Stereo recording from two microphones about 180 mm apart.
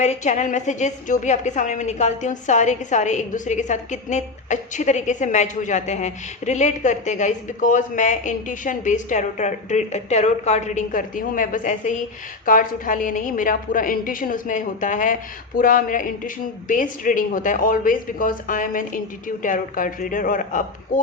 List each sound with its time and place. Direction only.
0.0 s a woman's voice: 40° left (ahead or behind)